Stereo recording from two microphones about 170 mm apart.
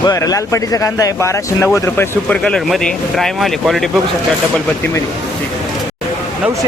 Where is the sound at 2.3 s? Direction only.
5° left (ahead or behind).